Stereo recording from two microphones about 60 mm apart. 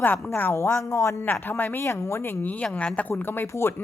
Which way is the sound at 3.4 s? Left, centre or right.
Left.